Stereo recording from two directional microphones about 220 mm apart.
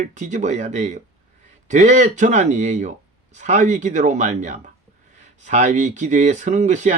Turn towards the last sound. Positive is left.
turn(degrees=-30)  # may be behind; listen again after turning